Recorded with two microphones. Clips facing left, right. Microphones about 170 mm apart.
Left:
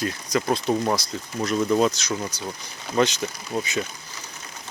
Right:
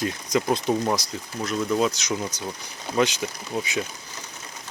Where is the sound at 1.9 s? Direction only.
15° right (ahead or behind).